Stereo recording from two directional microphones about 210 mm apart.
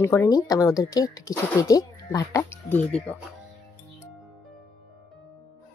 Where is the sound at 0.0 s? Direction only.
10° left (ahead or behind).